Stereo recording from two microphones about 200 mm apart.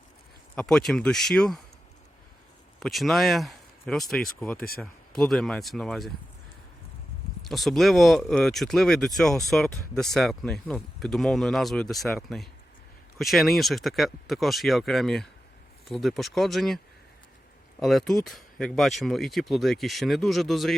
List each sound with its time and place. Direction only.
0.5 s speech: 5° left (ahead or behind)
2.8 s speech: centre (ahead or behind)
4.5 s speech: 50° left (ahead or behind)
4.8 s speech: 5° left (ahead or behind)
7.4 s speech: centre (ahead or behind)